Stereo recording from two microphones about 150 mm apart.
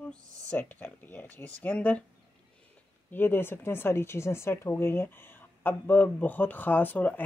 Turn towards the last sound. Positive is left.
turn(degrees=10)  # may be behind; listen again after turning